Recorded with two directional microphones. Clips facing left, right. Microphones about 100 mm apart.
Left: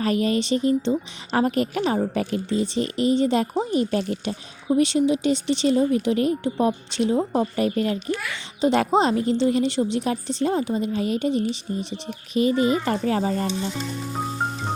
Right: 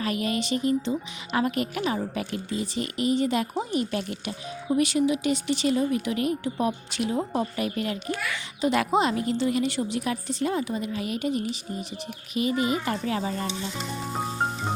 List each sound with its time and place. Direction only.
0.0 s a woman's voice: 35° left (ahead or behind)